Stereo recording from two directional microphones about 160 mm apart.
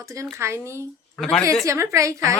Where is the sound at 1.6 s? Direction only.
20° right (ahead or behind).